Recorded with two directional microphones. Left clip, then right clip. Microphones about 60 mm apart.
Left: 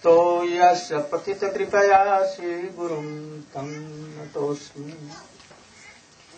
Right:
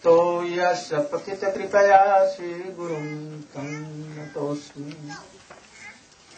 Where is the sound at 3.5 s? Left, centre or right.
Right.